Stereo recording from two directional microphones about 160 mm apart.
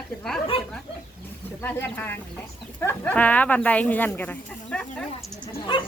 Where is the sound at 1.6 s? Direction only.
10° left (ahead or behind).